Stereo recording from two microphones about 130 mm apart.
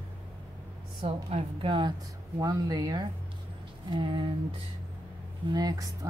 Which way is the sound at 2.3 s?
30° right (ahead or behind).